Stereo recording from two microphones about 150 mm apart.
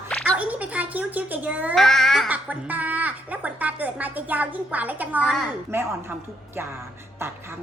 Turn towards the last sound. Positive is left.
turn(degrees=-15)  # may be behind; listen again after turning